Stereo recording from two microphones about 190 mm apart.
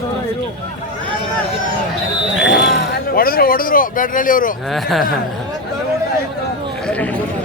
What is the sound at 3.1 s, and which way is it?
Speech, 50° left (ahead or behind).